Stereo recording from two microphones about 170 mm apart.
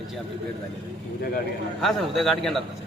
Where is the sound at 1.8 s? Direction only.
Centre (ahead or behind).